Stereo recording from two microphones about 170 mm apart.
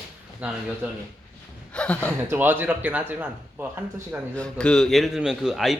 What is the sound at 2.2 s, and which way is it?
A man's voice, 10° right (ahead or behind).